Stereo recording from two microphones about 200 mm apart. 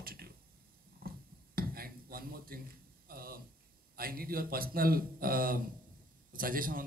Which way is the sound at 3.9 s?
45° right (ahead or behind).